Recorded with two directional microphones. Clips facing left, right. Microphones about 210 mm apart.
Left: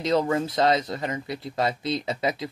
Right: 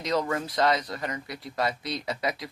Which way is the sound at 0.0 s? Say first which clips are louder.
Left 5 dB; 25° left (ahead or behind).